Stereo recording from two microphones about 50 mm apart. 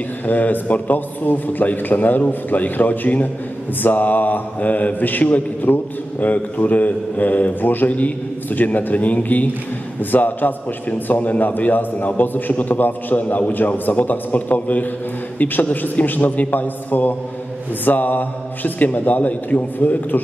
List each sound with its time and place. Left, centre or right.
0.3 s mantra: left
15.3 s a man's voice: left
15.7 s mantra: left